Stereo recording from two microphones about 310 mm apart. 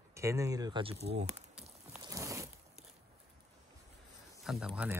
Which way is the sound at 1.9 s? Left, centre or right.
Centre.